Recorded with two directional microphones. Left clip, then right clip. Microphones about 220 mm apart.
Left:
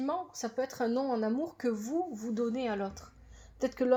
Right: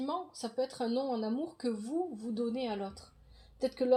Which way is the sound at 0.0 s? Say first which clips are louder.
Left 3 dB; 35° left (ahead or behind).